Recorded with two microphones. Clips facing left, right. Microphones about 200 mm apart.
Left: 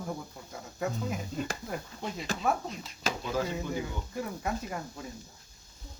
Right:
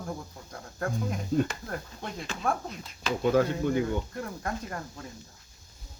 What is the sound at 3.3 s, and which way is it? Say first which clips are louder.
Speech: right 7 dB; 60° right (ahead or behind).